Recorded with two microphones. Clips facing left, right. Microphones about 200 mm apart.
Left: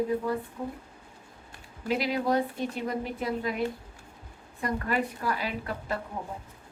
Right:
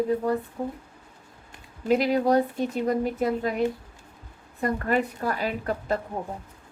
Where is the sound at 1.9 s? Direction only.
45° right (ahead or behind).